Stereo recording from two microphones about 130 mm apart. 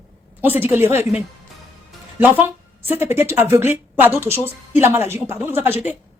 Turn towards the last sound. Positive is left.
turn(degrees=-15)  # may be behind; listen again after turning